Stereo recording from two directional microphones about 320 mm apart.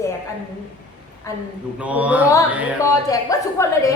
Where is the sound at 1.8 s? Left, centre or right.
Centre.